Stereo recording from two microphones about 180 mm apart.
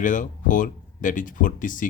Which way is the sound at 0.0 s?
45° left (ahead or behind).